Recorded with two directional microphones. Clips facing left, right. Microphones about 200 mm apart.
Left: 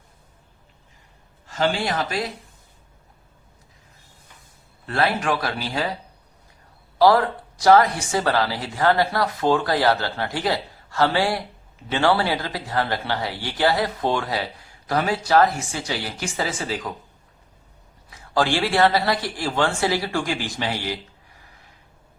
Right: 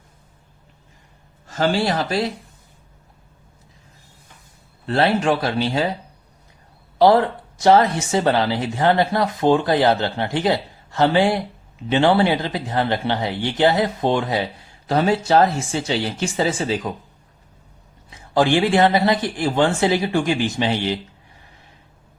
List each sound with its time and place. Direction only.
1.5 s speech: 40° right (ahead or behind)
4.9 s speech: 30° right (ahead or behind)
7.0 s speech: 25° right (ahead or behind)
18.1 s speech: 20° right (ahead or behind)